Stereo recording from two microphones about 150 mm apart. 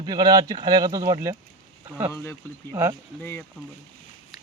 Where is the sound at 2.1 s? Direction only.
15° left (ahead or behind).